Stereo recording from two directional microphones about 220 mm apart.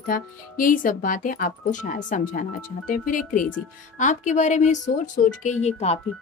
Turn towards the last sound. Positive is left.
turn(degrees=30)  # may be behind; listen again after turning